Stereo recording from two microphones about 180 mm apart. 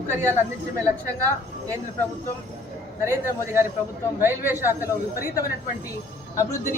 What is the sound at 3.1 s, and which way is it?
A man's voice, 15° right (ahead or behind).